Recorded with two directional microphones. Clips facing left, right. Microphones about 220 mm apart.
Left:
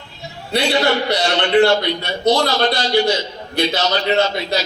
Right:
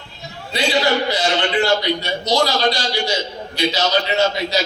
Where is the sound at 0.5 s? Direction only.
60° left (ahead or behind).